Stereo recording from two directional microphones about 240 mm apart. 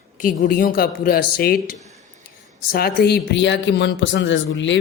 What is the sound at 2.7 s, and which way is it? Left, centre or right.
Speech, left.